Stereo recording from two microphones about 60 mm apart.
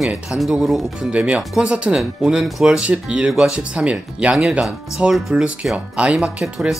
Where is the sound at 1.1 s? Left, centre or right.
Right.